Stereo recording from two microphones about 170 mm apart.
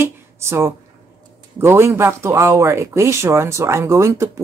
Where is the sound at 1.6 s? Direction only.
15° right (ahead or behind).